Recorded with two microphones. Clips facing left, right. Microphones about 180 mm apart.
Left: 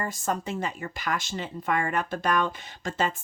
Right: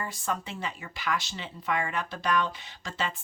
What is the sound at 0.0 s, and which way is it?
Speech, 45° left (ahead or behind).